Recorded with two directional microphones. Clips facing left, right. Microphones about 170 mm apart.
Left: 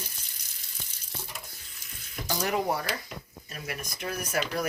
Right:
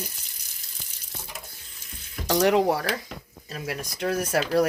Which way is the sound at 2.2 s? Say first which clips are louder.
Right 8 dB; 80° right.